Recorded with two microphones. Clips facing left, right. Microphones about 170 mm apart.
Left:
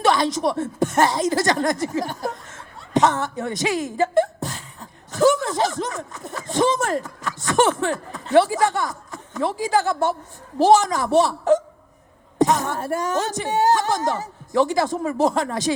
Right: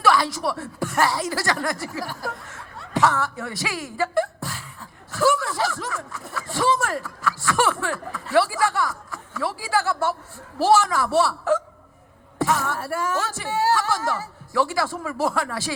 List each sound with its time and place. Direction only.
0.0 s speech: 20° left (ahead or behind)